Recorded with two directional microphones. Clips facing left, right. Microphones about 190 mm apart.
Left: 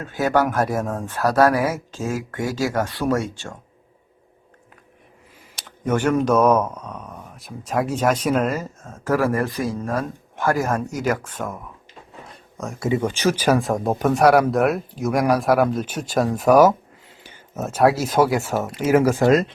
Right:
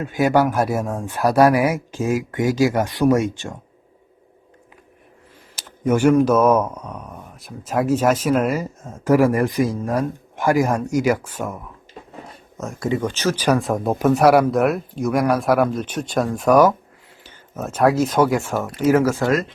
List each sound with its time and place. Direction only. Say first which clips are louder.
0.0 s speech: right 3 dB; 15° right (ahead or behind)
5.5 s speech: right 3 dB; 5° right (ahead or behind)
18.9 s speech: left 1 dB; 15° left (ahead or behind)